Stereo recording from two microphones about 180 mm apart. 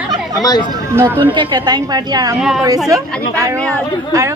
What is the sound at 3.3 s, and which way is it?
Speech, 15° right (ahead or behind).